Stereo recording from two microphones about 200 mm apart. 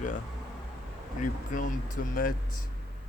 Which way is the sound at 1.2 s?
40° left (ahead or behind).